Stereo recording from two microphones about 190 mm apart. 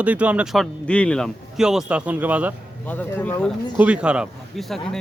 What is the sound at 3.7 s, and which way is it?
Speech, 5° right (ahead or behind).